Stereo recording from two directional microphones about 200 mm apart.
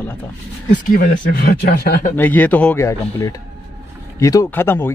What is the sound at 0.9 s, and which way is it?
Speech, 45° left (ahead or behind).